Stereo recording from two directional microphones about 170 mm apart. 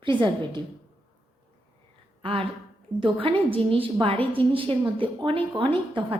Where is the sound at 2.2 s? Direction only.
30° right (ahead or behind).